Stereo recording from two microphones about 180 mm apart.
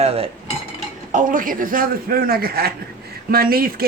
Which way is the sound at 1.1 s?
45° right (ahead or behind).